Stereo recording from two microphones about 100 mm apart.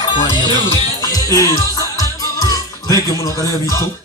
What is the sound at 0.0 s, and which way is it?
Speech, 50° left (ahead or behind).